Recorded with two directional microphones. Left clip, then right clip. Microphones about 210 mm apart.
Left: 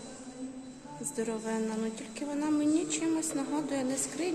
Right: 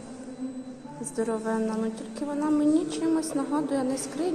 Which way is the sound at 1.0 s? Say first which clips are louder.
Right 5 dB; 25° left (ahead or behind).